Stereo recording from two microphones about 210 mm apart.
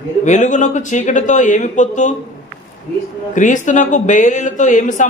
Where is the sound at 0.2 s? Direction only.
35° left (ahead or behind).